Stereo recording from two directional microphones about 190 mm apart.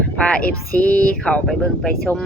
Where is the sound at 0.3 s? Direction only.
5° left (ahead or behind).